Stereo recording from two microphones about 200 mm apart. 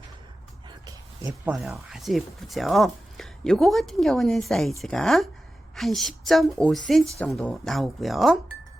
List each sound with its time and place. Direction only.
1.5 s speech: centre (ahead or behind)